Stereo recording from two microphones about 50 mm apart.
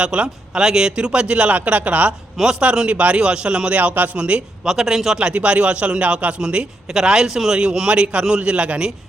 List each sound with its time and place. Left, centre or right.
0.0 s speech: centre
2.4 s speech: centre
3.8 s a man's voice: right
4.2 s a man's voice: right
5.2 s speech: right
6.9 s a man's voice: centre